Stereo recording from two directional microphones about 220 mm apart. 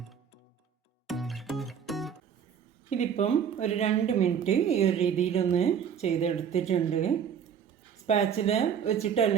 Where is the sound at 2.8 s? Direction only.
30° left (ahead or behind).